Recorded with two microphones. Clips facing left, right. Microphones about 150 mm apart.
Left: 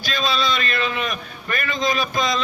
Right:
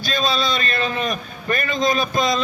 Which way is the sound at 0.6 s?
35° right (ahead or behind).